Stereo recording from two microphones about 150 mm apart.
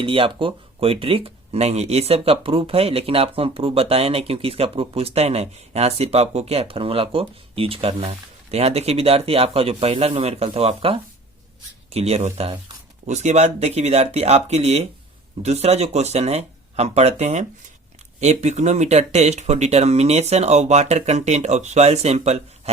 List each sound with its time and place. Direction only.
0.0 s speech: 35° right (ahead or behind)